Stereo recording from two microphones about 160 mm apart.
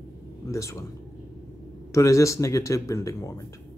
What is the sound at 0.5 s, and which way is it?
Speech, 20° left (ahead or behind).